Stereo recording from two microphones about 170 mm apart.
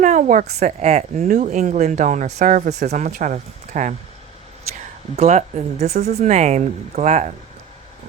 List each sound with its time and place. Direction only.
0.0 s a sound: 50° right (ahead or behind)
0.6 s speech: 40° right (ahead or behind)
5.1 s speech: 40° right (ahead or behind)